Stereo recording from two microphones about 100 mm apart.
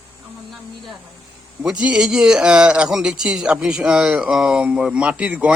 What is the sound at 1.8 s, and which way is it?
Speech, 10° right (ahead or behind).